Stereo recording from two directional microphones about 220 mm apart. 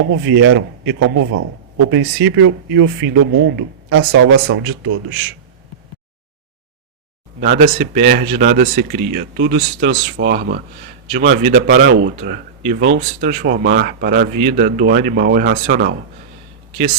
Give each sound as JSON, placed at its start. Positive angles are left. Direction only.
{"t": 0.1, "sound": "speech", "side_deg": -60}
{"t": 7.3, "sound": "speech", "side_deg": -40}